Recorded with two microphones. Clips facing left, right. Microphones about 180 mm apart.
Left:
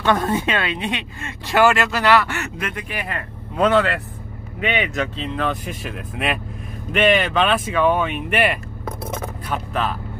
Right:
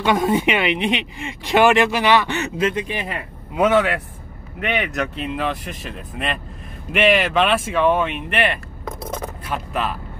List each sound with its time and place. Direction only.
0.0 s speech: 10° right (ahead or behind)